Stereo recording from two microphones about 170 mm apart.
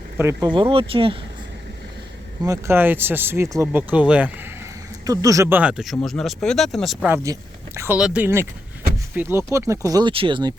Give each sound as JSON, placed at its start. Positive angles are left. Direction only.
{"t": 0.2, "sound": "speech", "side_deg": -15}
{"t": 0.4, "sound": "speech", "side_deg": -30}
{"t": 2.5, "sound": "speech", "side_deg": -15}
{"t": 5.0, "sound": "speech", "side_deg": -20}
{"t": 7.1, "sound": "speech", "side_deg": -15}